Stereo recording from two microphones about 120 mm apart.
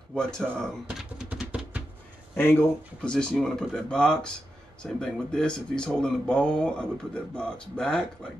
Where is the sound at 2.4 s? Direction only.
15° left (ahead or behind).